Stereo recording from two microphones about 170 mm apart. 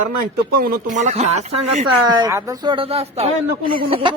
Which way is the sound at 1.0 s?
45° right (ahead or behind).